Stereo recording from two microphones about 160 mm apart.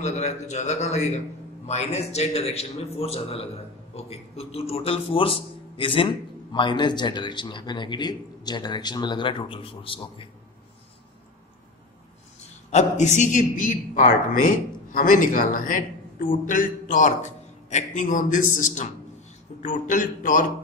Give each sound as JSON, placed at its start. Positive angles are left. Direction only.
{"t": 0.0, "sound": "a man's voice", "side_deg": 45}
{"t": 12.7, "sound": "a man's voice", "side_deg": 45}